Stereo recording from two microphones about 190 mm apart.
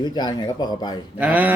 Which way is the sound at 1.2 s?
10° right (ahead or behind).